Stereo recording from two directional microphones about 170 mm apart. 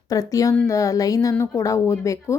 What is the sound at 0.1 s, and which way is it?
Speech, 20° left (ahead or behind).